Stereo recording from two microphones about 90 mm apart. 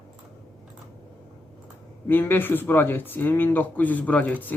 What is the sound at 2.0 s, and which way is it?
Speech, 25° left (ahead or behind).